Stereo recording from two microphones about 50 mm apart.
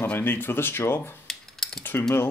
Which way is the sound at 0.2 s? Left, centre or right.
Left.